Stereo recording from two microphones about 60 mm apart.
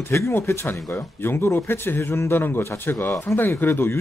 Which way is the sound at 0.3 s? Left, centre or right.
Left.